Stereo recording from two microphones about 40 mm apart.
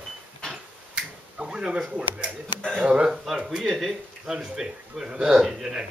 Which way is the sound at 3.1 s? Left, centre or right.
Centre.